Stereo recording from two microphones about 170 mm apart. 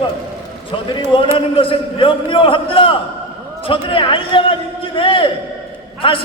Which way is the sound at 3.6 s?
30° left (ahead or behind).